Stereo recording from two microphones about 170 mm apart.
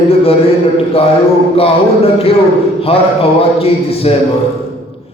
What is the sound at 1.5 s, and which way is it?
A man's voice, 35° left (ahead or behind).